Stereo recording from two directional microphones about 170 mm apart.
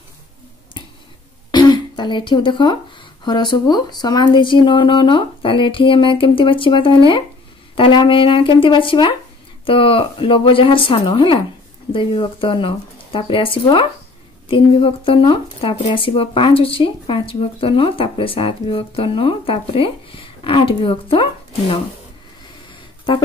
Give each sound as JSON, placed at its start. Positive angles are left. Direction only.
{"t": 1.5, "sound": "speech", "side_deg": 25}